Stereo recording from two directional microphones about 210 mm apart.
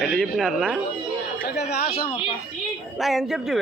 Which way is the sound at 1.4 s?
50° left (ahead or behind).